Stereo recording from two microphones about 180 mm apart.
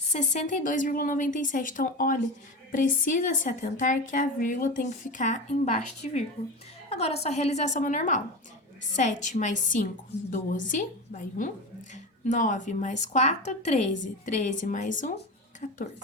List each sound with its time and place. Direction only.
0.1 s a woman's voice: 40° left (ahead or behind)